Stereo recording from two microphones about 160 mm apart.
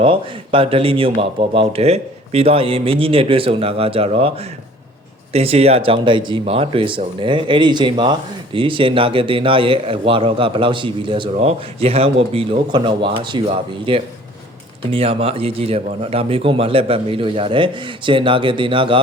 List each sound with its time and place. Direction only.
0.0 s a man's voice: 35° right (ahead or behind)